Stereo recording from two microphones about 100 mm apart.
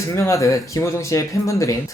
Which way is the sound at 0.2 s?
30° left (ahead or behind).